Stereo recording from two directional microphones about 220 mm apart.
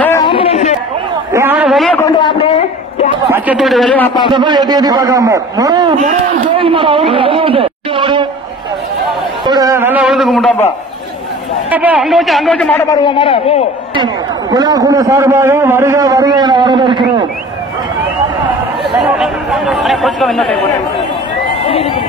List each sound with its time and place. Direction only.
0.2 s chatter: 25° left (ahead or behind)
1.3 s a sound: 10° right (ahead or behind)
2.1 s a sound: 25° left (ahead or behind)
3.3 s speech: 10° right (ahead or behind)
4.3 s a man's voice: 20° right (ahead or behind)
9.5 s speech: 15° right (ahead or behind); by 10.6 s centre (ahead or behind)
11.7 s speech: 5° right (ahead or behind)
12.9 s a man's voice: 20° left (ahead or behind)
13.9 s a man's voice: 20° right (ahead or behind)
18.9 s speech: centre (ahead or behind)
21.5 s a sound: 25° left (ahead or behind)